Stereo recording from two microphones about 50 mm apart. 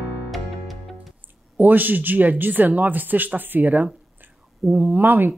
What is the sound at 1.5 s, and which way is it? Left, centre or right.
Speech, right.